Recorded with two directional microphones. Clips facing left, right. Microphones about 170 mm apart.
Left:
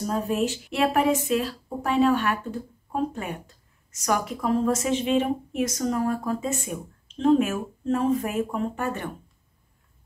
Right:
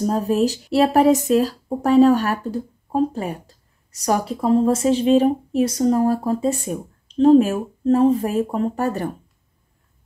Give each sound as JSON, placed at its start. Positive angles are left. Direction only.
{"t": 0.0, "sound": "speech", "side_deg": -35}